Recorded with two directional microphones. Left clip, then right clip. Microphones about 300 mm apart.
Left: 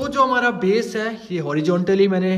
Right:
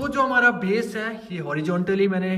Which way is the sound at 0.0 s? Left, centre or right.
Centre.